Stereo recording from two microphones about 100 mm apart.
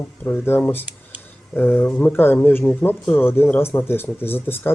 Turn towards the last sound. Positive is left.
turn(degrees=20)  # may be behind; listen again after turning